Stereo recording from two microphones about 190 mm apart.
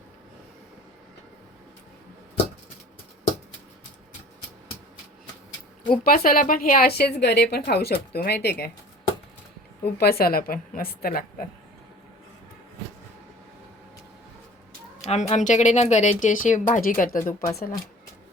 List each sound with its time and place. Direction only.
6.2 s a woman's voice: 50° left (ahead or behind)
9.8 s a woman's voice: 55° left (ahead or behind)
15.0 s speech: 35° left (ahead or behind)